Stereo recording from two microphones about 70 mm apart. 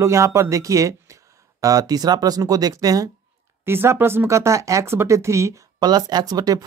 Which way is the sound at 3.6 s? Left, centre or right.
Right.